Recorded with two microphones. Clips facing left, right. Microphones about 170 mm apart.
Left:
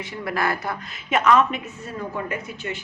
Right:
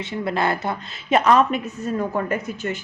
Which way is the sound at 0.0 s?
25° right (ahead or behind).